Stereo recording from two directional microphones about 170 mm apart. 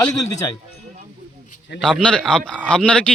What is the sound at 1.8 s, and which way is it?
Speech, 5° left (ahead or behind).